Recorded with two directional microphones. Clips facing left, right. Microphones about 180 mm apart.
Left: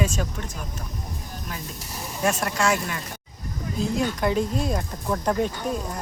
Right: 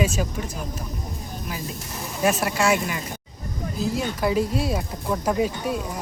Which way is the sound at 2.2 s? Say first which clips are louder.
Right 2 dB; 5° right (ahead or behind).